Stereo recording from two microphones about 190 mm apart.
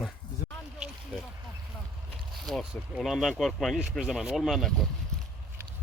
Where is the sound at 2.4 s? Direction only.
Centre (ahead or behind).